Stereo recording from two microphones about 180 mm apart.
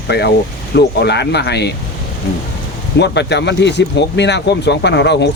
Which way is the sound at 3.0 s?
75° left (ahead or behind).